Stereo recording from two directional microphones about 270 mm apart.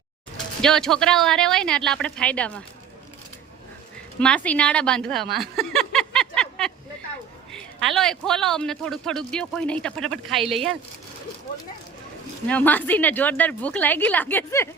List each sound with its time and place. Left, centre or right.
0.6 s a man's voice: centre
4.2 s a sound: centre
7.5 s a man's voice: centre
12.5 s a woman's voice: centre